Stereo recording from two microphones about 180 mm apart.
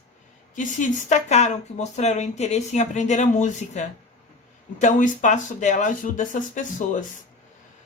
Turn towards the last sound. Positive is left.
turn(degrees=45)  # may be behind; listen again after turning